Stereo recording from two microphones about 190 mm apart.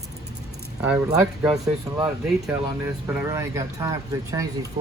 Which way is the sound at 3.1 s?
10° right (ahead or behind).